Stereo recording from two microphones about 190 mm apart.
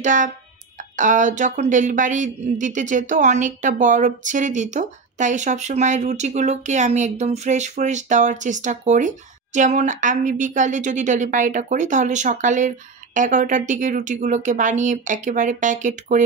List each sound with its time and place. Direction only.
0.0 s speech: 40° right (ahead or behind)